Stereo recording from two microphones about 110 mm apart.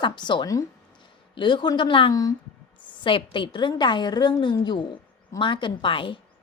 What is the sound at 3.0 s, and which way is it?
A woman's voice, 50° left (ahead or behind).